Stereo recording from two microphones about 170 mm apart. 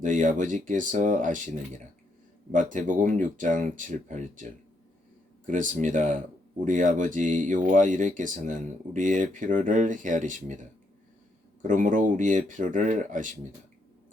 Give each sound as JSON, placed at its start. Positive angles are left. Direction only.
{"t": 0.0, "sound": "speech", "side_deg": -50}
{"t": 2.5, "sound": "speech", "side_deg": -50}
{"t": 5.5, "sound": "speech", "side_deg": -50}
{"t": 11.6, "sound": "speech", "side_deg": -50}